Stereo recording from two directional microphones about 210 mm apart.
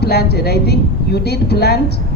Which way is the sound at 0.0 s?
50° left (ahead or behind).